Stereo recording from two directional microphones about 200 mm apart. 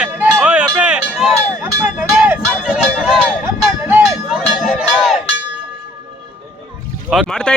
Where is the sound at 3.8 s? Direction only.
5° right (ahead or behind).